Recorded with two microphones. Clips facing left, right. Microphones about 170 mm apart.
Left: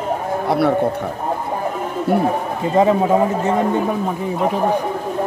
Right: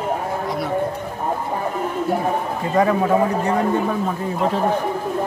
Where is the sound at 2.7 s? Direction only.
20° left (ahead or behind).